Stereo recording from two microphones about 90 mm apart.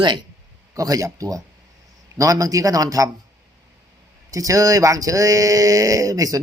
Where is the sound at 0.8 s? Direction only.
40° right (ahead or behind).